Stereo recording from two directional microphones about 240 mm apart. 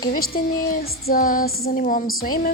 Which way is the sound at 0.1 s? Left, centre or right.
Left.